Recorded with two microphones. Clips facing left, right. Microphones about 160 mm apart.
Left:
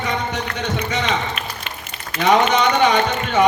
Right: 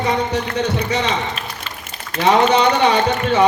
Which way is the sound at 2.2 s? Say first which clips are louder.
Right 2 dB; 30° right (ahead or behind).